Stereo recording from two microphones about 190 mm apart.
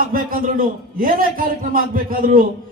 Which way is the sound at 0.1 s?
50° right (ahead or behind).